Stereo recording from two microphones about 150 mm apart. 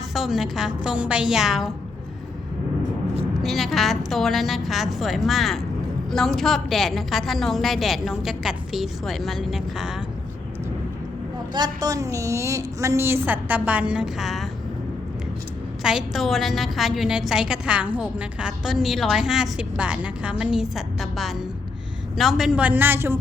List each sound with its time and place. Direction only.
0.1 s a woman's voice: centre (ahead or behind)
3.4 s a woman's voice: centre (ahead or behind)
11.5 s a woman's voice: 25° right (ahead or behind); by 14.5 s centre (ahead or behind)
15.8 s a woman's voice: 5° right (ahead or behind)